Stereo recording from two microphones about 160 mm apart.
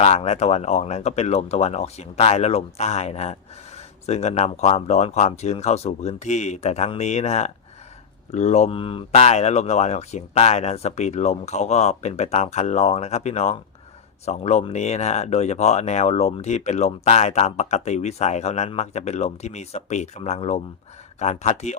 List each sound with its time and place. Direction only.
0.0 s speech: 45° left (ahead or behind)